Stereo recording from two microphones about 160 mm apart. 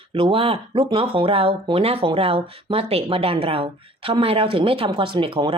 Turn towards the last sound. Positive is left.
turn(degrees=-35)  # may be behind; listen again after turning